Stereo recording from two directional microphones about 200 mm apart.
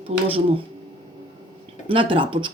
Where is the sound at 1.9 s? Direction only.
25° right (ahead or behind).